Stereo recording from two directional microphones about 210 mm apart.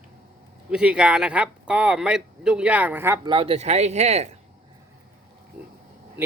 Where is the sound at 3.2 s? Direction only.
25° right (ahead or behind).